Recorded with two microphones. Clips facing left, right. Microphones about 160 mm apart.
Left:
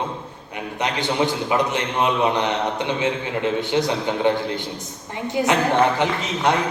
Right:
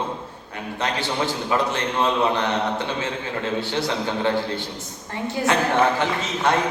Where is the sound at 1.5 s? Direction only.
15° left (ahead or behind).